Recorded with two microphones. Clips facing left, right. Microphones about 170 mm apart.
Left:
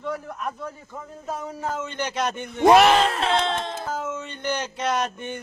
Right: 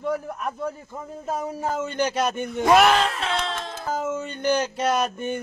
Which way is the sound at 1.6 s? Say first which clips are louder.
Right 3 dB; 40° right (ahead or behind).